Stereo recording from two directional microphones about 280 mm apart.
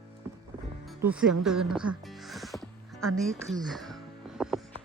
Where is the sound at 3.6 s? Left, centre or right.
Centre.